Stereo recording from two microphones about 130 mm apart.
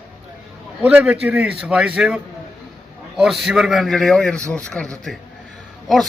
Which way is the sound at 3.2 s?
Centre (ahead or behind).